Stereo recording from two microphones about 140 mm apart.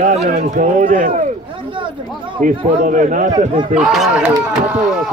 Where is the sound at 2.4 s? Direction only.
70° right (ahead or behind).